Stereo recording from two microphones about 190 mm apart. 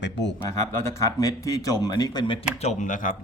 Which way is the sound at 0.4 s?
15° left (ahead or behind).